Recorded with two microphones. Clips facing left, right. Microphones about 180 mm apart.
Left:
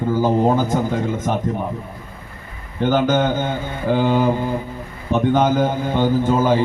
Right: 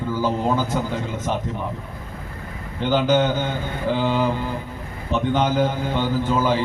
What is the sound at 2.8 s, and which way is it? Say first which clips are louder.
A man's voice: left 2 dB; 50° left (ahead or behind).